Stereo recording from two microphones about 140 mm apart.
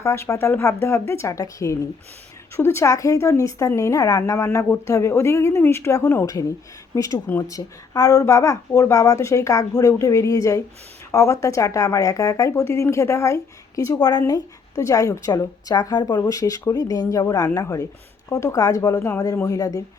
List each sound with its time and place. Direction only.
0.0 s speech: 20° left (ahead or behind)